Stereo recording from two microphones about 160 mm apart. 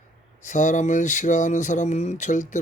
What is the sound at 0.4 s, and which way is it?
Speech, 50° left (ahead or behind).